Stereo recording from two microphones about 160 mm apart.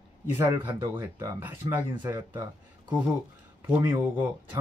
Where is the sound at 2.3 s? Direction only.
30° right (ahead or behind).